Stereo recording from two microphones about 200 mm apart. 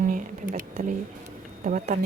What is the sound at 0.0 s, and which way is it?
Speech, 40° right (ahead or behind).